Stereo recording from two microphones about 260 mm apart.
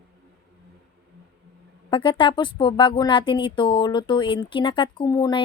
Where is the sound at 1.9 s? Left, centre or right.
Centre.